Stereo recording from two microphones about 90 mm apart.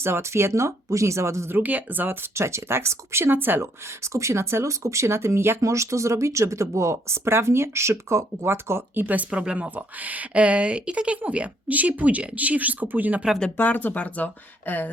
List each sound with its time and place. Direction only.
0.0 s speech: 30° right (ahead or behind)
13.6 s speech: 20° left (ahead or behind)